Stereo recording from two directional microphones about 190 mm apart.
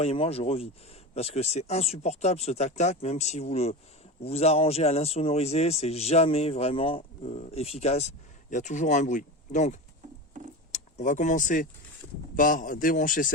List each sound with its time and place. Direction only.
0.0 s a man's voice: 30° left (ahead or behind)